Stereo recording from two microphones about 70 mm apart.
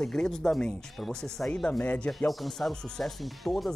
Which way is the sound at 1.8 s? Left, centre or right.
Left.